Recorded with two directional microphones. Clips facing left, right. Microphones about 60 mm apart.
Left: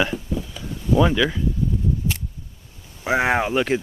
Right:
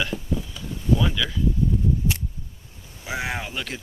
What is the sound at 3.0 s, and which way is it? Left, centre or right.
Speech, left.